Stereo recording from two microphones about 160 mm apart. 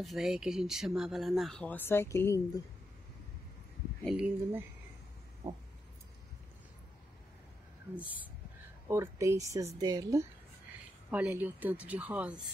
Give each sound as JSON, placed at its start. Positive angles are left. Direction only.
{"t": 0.0, "sound": "speech", "side_deg": 0}
{"t": 4.0, "sound": "speech", "side_deg": 0}
{"t": 7.9, "sound": "speech", "side_deg": -10}
{"t": 11.1, "sound": "speech", "side_deg": -10}